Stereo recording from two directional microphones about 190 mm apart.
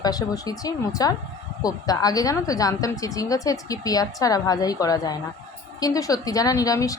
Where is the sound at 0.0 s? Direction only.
20° left (ahead or behind).